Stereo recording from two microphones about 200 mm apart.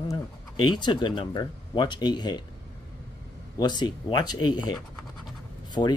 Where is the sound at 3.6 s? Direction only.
20° left (ahead or behind).